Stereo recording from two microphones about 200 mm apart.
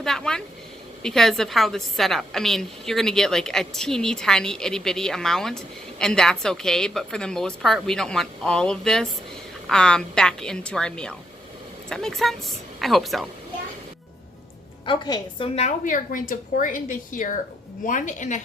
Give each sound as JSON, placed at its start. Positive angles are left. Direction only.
{"t": 0.0, "sound": "a sound", "side_deg": 5}
{"t": 1.0, "sound": "a woman's voice", "side_deg": 0}
{"t": 14.8, "sound": "a woman's voice", "side_deg": 20}
{"t": 15.5, "sound": "a woman's voice", "side_deg": 40}